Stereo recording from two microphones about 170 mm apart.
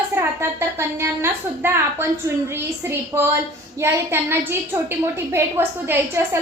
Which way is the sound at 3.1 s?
15° right (ahead or behind).